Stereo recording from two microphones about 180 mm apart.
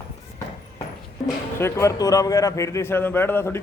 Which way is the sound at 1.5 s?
15° left (ahead or behind).